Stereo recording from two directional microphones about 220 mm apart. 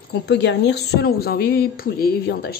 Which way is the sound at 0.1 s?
50° left (ahead or behind).